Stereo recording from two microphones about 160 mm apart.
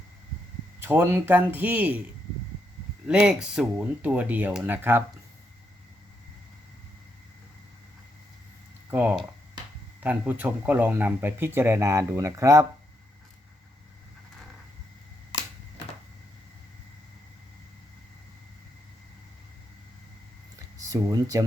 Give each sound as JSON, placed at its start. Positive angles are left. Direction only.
{"t": 0.8, "sound": "speech", "side_deg": -10}
{"t": 3.1, "sound": "speech", "side_deg": -5}
{"t": 8.9, "sound": "speech", "side_deg": -10}
{"t": 20.8, "sound": "speech", "side_deg": -20}